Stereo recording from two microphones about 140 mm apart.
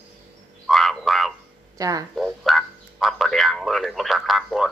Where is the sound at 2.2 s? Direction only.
Centre (ahead or behind).